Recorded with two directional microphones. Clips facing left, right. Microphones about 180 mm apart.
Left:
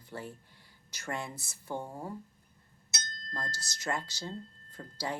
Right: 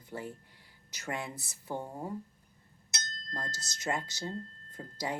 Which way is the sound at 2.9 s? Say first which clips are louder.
Even; 20° right (ahead or behind).